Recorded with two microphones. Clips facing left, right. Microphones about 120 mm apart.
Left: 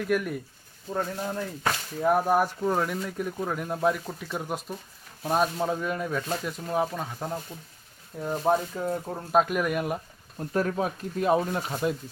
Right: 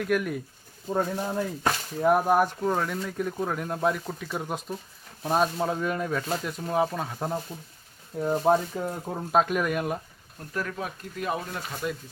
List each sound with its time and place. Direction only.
0.0 s speech: centre (ahead or behind)
0.9 s speech: 15° right (ahead or behind)
8.2 s speech: 20° right (ahead or behind)
9.3 s speech: 5° left (ahead or behind)
10.5 s speech: 35° left (ahead or behind)